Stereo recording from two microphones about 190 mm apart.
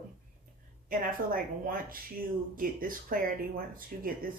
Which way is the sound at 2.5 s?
50° right (ahead or behind).